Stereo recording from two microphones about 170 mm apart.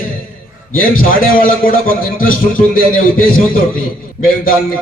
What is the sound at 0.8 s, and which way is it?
A man's voice, 55° left (ahead or behind).